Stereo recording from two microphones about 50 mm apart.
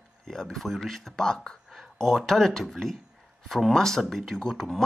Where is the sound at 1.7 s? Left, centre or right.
Centre.